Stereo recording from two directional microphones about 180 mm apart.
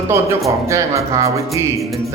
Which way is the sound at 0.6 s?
15° right (ahead or behind).